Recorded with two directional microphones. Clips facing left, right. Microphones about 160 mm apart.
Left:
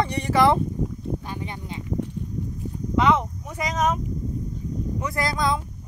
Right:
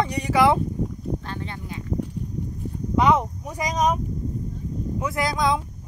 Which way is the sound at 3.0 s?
15° right (ahead or behind).